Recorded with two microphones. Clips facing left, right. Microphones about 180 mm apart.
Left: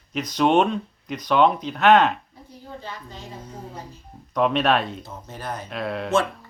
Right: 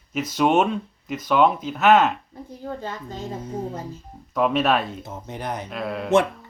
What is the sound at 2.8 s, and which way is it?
Speech, 45° right (ahead or behind).